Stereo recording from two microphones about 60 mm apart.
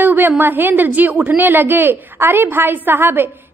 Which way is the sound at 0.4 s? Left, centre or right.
Right.